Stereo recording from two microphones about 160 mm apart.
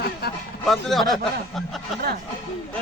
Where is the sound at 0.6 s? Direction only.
Centre (ahead or behind).